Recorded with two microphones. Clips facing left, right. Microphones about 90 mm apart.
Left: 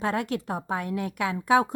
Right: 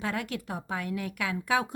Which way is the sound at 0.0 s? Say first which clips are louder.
Left 5 dB; 35° left (ahead or behind).